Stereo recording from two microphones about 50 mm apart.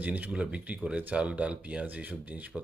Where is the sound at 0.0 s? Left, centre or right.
Right.